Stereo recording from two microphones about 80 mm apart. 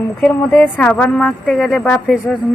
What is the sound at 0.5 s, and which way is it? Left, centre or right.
A woman's voice, centre.